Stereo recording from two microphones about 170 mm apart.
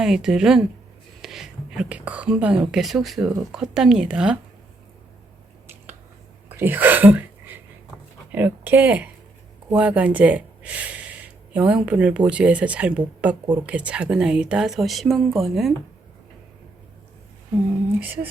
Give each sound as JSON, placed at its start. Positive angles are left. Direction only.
{"t": 0.0, "sound": "a woman's voice", "side_deg": -5}
{"t": 5.6, "sound": "finger snapping", "side_deg": -10}
{"t": 6.5, "sound": "sneeze", "side_deg": -10}
{"t": 8.3, "sound": "a woman's voice", "side_deg": -10}
{"t": 18.0, "sound": "speech", "side_deg": -10}